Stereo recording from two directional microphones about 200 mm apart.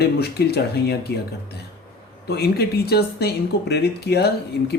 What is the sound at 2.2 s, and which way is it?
Speech, 55° left (ahead or behind).